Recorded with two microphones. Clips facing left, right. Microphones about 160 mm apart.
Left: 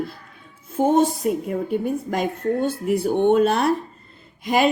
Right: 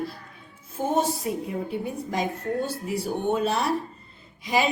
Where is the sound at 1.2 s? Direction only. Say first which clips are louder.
Left 6 dB; 50° left (ahead or behind).